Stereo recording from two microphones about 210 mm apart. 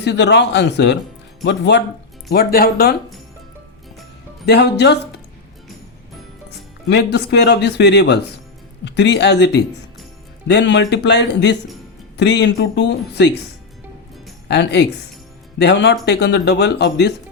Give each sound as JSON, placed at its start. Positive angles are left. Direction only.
{"t": 0.0, "sound": "speech", "side_deg": 55}
{"t": 2.3, "sound": "speech", "side_deg": 45}
{"t": 4.4, "sound": "speech", "side_deg": 55}
{"t": 6.8, "sound": "speech", "side_deg": 55}
{"t": 14.4, "sound": "speech", "side_deg": 55}